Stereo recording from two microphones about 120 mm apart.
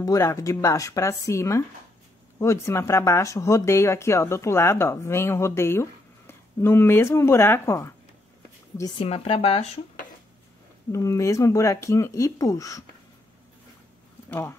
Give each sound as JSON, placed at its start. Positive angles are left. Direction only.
{"t": 0.0, "sound": "speech", "side_deg": 25}
{"t": 8.9, "sound": "speech", "side_deg": 55}
{"t": 10.9, "sound": "speech", "side_deg": 25}